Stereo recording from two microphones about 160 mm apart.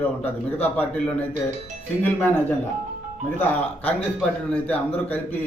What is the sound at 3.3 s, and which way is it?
A man's voice, 10° left (ahead or behind).